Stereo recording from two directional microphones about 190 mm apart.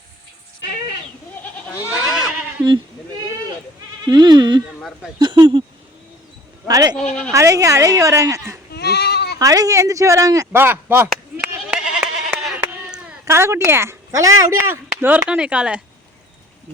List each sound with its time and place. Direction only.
2.0 s goat: centre (ahead or behind)
4.0 s speech: 20° right (ahead or behind)
6.7 s speech: 20° right (ahead or behind)
7.1 s speech: 5° left (ahead or behind)
7.3 s speech: 15° right (ahead or behind)
8.7 s goat: 60° left (ahead or behind)
9.4 s speech: 20° right (ahead or behind)
11.1 s goat: 5° right (ahead or behind)
13.2 s speech: 15° right (ahead or behind)